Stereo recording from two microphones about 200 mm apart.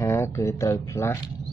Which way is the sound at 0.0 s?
15° left (ahead or behind).